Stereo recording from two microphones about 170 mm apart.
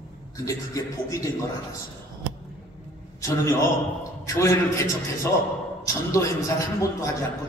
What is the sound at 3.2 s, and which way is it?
A man's voice, 15° left (ahead or behind).